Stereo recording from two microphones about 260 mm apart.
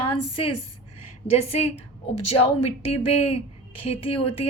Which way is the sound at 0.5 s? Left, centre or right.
Left.